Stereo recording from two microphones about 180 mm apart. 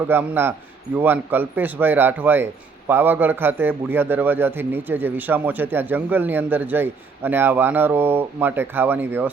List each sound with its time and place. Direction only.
0.1 s speech: 10° right (ahead or behind)